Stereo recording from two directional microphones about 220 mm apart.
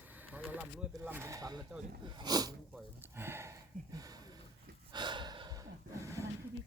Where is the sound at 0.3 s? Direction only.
10° right (ahead or behind).